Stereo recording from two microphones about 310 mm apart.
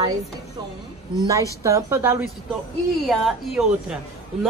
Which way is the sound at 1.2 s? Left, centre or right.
Centre.